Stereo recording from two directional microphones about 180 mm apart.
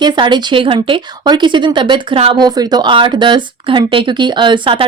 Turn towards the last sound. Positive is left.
turn(degrees=-30)  # may be behind; listen again after turning